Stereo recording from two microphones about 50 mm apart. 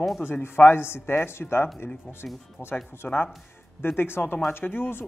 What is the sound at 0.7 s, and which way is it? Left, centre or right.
Speech, left.